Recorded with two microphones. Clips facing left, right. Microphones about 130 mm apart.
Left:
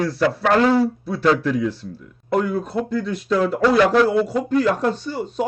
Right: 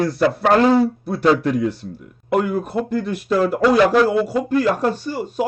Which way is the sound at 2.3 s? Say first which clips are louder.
Right 1 dB; 15° right (ahead or behind).